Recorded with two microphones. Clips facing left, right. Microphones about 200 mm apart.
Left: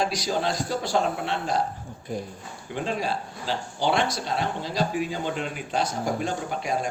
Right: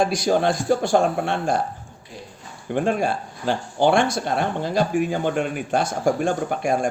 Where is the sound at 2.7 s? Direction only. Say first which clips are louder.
Right 6 dB; 55° right (ahead or behind).